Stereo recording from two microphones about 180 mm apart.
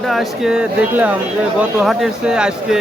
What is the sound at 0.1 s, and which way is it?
A man's voice, centre (ahead or behind).